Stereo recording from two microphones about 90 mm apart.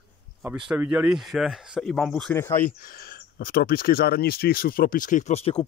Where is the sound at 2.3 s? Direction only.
25° left (ahead or behind).